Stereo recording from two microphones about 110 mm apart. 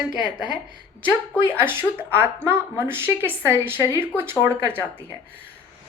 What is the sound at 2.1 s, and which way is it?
Speech, 20° right (ahead or behind).